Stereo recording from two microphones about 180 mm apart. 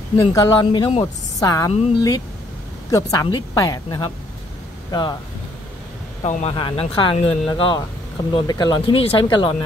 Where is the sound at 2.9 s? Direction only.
20° left (ahead or behind).